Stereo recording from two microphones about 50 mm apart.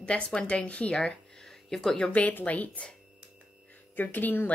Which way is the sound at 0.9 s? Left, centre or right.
Centre.